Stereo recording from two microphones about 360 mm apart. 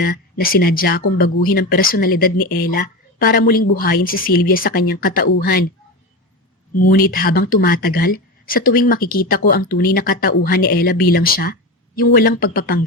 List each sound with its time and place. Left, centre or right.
0.0 s speech: left
6.8 s speech: left